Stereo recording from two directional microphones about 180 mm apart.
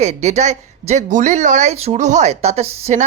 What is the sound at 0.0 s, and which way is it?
Speech, 40° right (ahead or behind).